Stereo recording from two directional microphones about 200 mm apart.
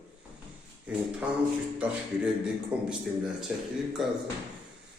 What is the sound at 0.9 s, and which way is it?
A man's voice, 5° right (ahead or behind).